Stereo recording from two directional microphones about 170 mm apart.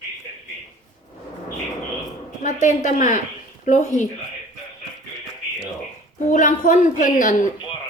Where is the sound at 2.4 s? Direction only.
45° left (ahead or behind).